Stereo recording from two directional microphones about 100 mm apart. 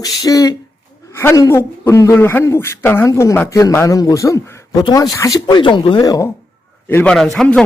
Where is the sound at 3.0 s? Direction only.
35° left (ahead or behind).